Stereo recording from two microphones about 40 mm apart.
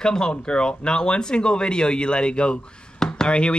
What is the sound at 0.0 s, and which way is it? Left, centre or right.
Speech, centre.